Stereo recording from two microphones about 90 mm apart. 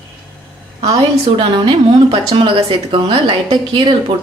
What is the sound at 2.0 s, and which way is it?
A woman's voice, 75° right (ahead or behind).